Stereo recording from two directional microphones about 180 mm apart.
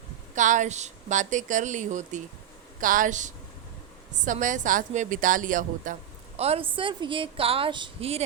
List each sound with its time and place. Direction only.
0.3 s a woman's voice: 45° right (ahead or behind)
6.4 s a woman's voice: 30° right (ahead or behind)